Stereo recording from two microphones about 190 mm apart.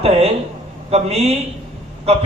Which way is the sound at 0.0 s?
30° right (ahead or behind).